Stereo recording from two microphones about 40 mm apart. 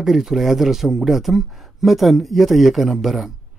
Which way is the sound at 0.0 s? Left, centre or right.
Centre.